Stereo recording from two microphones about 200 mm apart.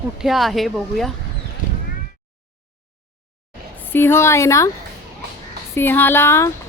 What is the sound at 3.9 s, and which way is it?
Speech, 10° left (ahead or behind).